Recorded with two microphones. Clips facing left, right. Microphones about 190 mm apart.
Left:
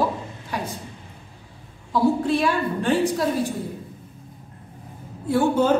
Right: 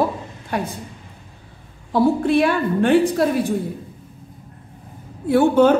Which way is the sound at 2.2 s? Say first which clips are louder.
Right 4 dB; 60° right (ahead or behind).